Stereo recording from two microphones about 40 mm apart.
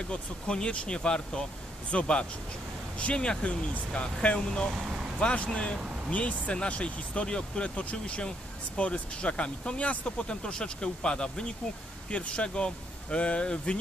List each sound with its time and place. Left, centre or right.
0.1 s speech: left